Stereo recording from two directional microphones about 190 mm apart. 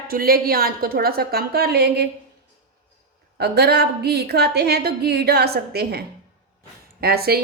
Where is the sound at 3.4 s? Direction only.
55° right (ahead or behind).